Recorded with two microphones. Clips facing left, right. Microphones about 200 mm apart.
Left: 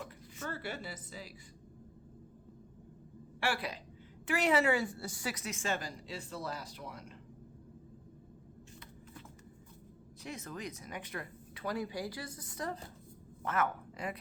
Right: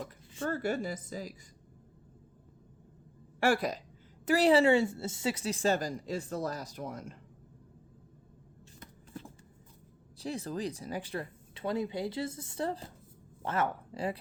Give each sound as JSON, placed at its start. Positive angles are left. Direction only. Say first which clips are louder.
{"t": 0.4, "sound": "a woman's voice", "louder": "right 9 dB", "side_deg": -45}
{"t": 3.4, "sound": "a woman's voice", "louder": "right 8 dB", "side_deg": -45}
{"t": 4.3, "sound": "a woman's voice", "louder": "right 6 dB", "side_deg": -35}
{"t": 10.2, "sound": "speech", "louder": "right 8 dB", "side_deg": -30}